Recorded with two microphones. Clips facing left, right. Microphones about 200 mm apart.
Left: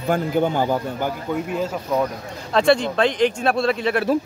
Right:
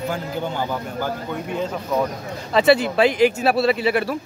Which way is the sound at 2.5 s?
5° right (ahead or behind).